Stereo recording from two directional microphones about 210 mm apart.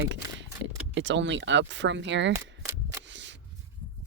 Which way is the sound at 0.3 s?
60° right (ahead or behind).